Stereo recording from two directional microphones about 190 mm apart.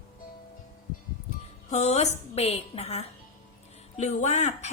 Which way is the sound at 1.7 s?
35° left (ahead or behind).